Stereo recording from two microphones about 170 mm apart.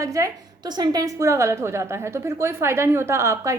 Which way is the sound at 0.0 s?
20° right (ahead or behind).